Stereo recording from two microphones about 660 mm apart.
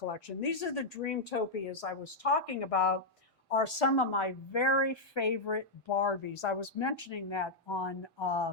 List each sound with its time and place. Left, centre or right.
0.1 s a woman's voice: left